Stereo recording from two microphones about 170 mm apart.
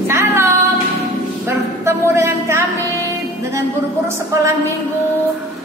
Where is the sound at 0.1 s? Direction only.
15° right (ahead or behind).